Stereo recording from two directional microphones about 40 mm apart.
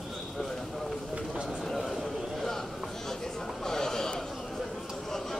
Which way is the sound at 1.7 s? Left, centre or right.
Centre.